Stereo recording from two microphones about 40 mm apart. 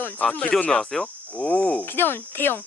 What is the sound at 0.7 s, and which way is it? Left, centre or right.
Speech, centre.